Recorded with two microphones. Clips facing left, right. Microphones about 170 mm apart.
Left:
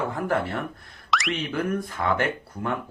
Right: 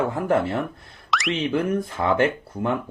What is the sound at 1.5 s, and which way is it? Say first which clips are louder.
Speech: right 4 dB; 25° right (ahead or behind).